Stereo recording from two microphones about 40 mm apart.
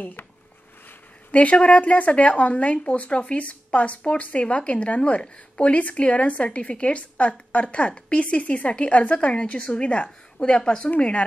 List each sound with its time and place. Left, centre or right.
1.3 s speech: left